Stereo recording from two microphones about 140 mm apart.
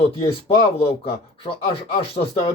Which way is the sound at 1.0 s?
45° left (ahead or behind).